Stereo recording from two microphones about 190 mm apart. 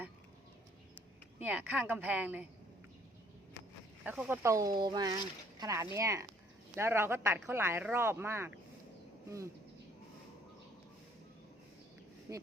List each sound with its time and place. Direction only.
1.4 s speech: 5° right (ahead or behind)
4.0 s speech: 10° right (ahead or behind)
12.3 s speech: 15° right (ahead or behind)